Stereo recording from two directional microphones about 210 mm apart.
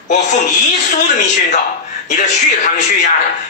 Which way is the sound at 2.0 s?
35° left (ahead or behind).